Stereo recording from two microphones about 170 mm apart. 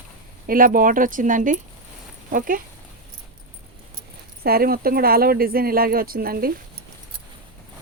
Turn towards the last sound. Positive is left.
turn(degrees=-60)  # may be behind; listen again after turning